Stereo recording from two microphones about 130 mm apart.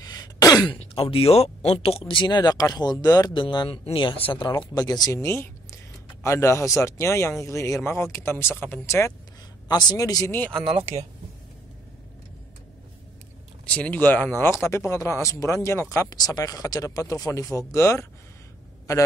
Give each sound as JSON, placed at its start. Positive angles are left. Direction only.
{"t": 0.1, "sound": "throat clearing", "side_deg": 30}
{"t": 0.7, "sound": "speech", "side_deg": 45}
{"t": 9.7, "sound": "speech", "side_deg": 30}
{"t": 10.3, "sound": "speech", "side_deg": 15}
{"t": 13.7, "sound": "speech", "side_deg": 10}